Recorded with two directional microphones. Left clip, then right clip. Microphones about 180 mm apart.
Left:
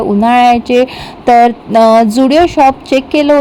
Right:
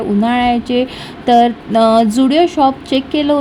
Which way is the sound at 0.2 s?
25° left (ahead or behind).